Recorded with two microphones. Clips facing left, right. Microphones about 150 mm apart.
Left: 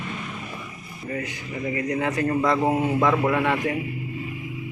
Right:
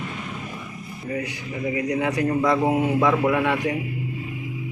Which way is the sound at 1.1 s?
15° right (ahead or behind).